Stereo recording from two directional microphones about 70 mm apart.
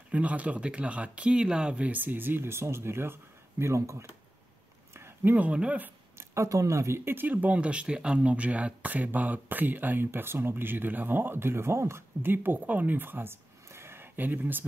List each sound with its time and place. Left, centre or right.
0.1 s speech: centre; by 4.1 s right
4.9 s a sound: right
5.3 s speech: centre
6.1 s speech: right